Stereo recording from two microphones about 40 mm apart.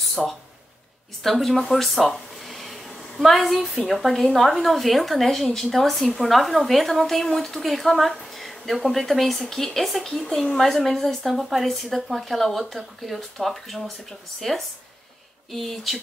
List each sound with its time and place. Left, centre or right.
0.1 s speech: centre
10.2 s speech: left
10.5 s a woman's voice: centre
15.5 s speech: centre